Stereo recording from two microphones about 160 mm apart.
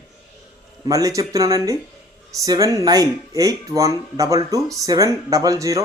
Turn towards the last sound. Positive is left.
turn(degrees=-20)  # may be behind; listen again after turning